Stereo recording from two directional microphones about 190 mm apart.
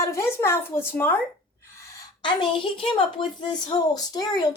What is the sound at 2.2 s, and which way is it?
A woman's voice, 25° left (ahead or behind).